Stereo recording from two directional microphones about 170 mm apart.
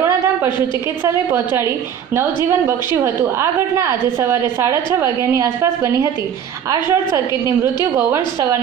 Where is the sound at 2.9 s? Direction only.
15° right (ahead or behind).